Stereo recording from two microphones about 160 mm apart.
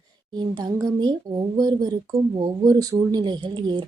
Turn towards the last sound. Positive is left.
turn(degrees=-25)  # may be behind; listen again after turning